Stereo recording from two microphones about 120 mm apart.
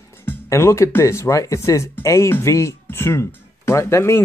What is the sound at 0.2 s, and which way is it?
Speech, 20° left (ahead or behind).